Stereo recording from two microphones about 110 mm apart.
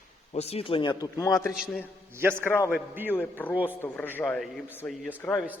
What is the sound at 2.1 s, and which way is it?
Speech, 25° right (ahead or behind).